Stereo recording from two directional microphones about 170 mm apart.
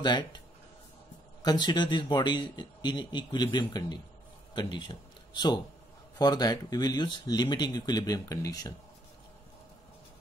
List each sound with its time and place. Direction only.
0.0 s a man's voice: 25° left (ahead or behind)
1.4 s a man's voice: 25° left (ahead or behind)